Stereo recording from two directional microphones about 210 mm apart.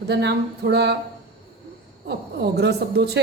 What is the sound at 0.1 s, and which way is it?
Speech, 55° right (ahead or behind).